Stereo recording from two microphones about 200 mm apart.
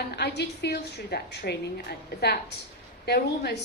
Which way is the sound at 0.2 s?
55° left (ahead or behind).